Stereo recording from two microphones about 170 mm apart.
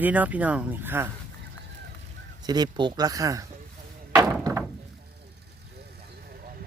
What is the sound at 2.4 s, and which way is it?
Speech, 25° right (ahead or behind).